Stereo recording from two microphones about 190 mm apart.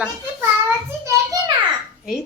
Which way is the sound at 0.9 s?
15° right (ahead or behind).